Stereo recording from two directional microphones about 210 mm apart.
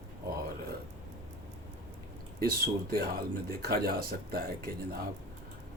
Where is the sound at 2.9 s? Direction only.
45° right (ahead or behind).